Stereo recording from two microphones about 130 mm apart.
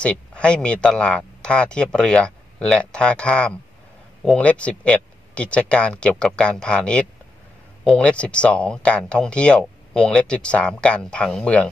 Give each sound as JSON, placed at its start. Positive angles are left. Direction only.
{"t": 0.0, "sound": "speech", "side_deg": 10}